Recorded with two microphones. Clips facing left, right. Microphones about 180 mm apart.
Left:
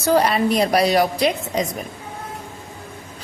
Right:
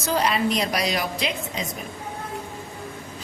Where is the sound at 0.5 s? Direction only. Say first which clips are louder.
Left 8 dB; 45° left (ahead or behind).